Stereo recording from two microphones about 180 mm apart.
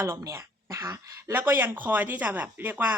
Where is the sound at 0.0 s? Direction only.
15° right (ahead or behind).